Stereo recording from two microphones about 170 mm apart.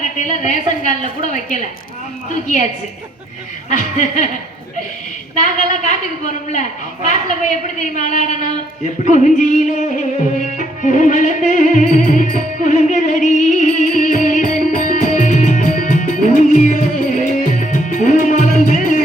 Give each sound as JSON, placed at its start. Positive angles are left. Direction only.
{"t": 0.0, "sound": "a woman's voice", "side_deg": 45}
{"t": 3.7, "sound": "a woman's voice", "side_deg": 45}
{"t": 5.4, "sound": "a woman's voice", "side_deg": 45}
{"t": 7.8, "sound": "a woman's voice", "side_deg": 45}
{"t": 10.4, "sound": "music", "side_deg": 50}